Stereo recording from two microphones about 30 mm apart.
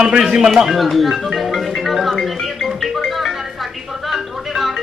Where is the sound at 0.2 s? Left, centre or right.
Centre.